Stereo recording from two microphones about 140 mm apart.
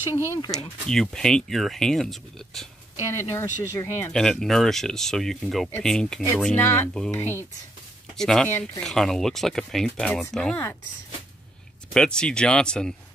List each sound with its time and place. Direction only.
0.0 s speech: 15° right (ahead or behind)
0.8 s speech: 5° left (ahead or behind)
3.2 s speech: 20° left (ahead or behind)
4.1 s speech: 5° left (ahead or behind)
8.2 s speech: 5° left (ahead or behind)
8.5 s speech: 15° left (ahead or behind)
8.8 s speech: centre (ahead or behind)
11.9 s speech: 5° left (ahead or behind)